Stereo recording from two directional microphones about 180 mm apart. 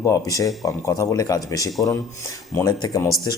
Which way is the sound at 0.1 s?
20° left (ahead or behind).